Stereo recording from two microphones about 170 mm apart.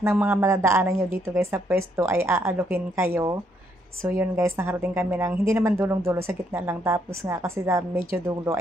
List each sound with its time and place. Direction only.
0.0 s a woman's voice: 10° right (ahead or behind)